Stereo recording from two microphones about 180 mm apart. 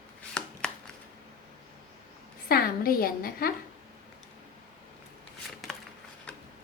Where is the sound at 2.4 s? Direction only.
55° left (ahead or behind).